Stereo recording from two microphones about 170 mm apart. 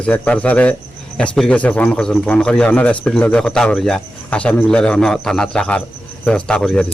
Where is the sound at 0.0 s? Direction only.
10° left (ahead or behind).